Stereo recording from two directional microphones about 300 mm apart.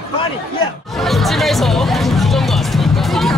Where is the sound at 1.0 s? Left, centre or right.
Centre.